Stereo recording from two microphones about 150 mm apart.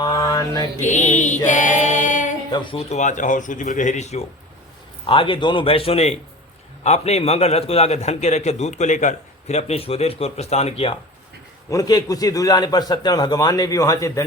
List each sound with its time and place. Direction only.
0.0 s mantra: 25° left (ahead or behind)
0.8 s a man's voice: 55° left (ahead or behind)
1.5 s choir: 55° left (ahead or behind)
2.5 s a man's voice: 30° left (ahead or behind)
2.9 s speech: 55° left (ahead or behind)
5.0 s a man's voice: 35° left (ahead or behind)
11.7 s a man's voice: 25° left (ahead or behind)